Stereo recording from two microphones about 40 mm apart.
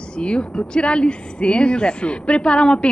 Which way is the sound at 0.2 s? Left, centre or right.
Left.